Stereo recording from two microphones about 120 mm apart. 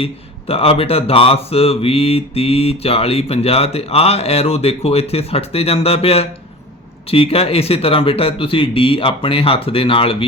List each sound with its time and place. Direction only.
0.0 s a man's voice: 55° left (ahead or behind)